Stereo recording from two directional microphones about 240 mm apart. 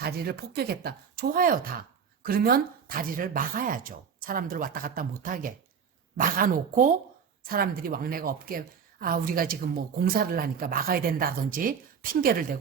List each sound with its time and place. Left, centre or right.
0.0 s a woman's voice: right